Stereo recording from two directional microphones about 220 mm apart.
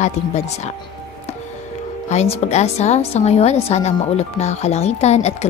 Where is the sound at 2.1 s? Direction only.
30° left (ahead or behind).